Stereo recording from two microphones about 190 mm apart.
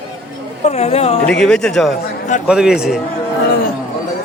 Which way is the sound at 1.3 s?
5° left (ahead or behind).